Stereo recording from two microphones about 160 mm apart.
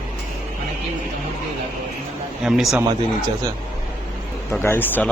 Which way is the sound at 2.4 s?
5° right (ahead or behind).